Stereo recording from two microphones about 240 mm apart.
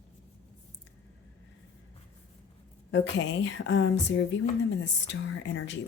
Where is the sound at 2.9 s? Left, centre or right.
Left.